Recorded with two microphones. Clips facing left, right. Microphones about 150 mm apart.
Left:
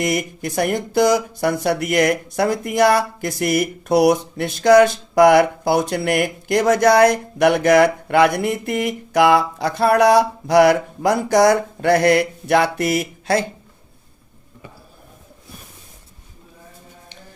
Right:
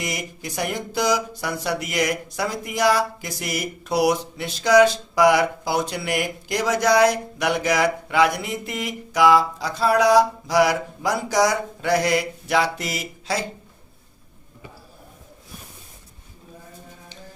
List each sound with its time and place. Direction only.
0.0 s speech: 55° left (ahead or behind)